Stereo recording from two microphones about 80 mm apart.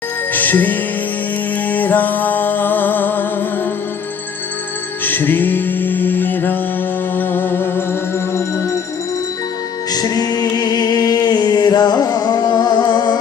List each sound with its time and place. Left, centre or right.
0.3 s music: left
5.0 s music: left
9.9 s music: left